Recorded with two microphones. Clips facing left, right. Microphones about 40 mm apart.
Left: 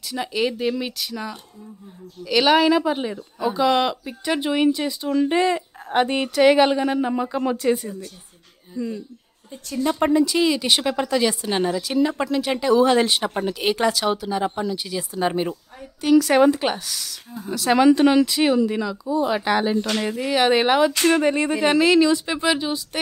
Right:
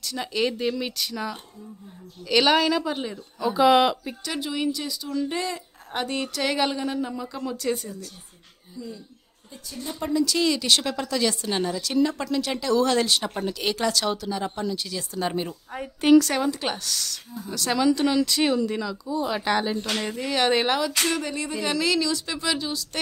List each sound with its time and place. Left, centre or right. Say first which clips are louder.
0.0 s speech: left 2 dB; centre
3.5 s speech: right 2 dB; centre
4.2 s a woman's voice: left 10 dB; left
7.5 s speech: left 6 dB; centre
8.7 s speech: left 9 dB; left
10.2 s speech: left 3 dB; centre
16.0 s a woman's voice: right 1 dB; right
16.3 s a woman's voice: left 10 dB; left
16.6 s speech: left 4 dB; centre
17.9 s speech: left 6 dB; left
18.2 s speech: left 4 dB; centre
21.0 s speech: left 8 dB; left